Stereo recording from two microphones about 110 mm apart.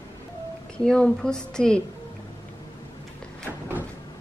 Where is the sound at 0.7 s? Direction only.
5° left (ahead or behind).